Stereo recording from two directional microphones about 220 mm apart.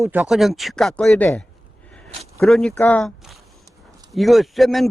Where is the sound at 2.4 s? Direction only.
Centre (ahead or behind).